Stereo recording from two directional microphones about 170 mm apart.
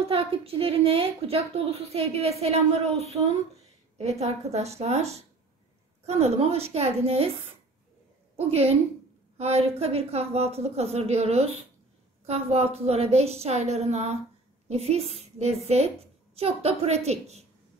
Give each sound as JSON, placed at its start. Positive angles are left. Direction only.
{"t": 0.1, "sound": "a child's voice", "side_deg": -35}
{"t": 8.4, "sound": "a child's voice", "side_deg": -35}